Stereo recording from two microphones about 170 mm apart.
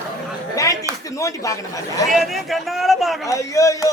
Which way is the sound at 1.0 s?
20° left (ahead or behind).